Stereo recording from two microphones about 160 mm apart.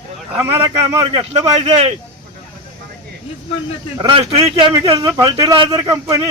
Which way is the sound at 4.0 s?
35° right (ahead or behind).